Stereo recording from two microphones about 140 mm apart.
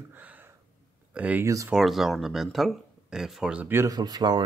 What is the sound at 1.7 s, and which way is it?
Speech, centre (ahead or behind).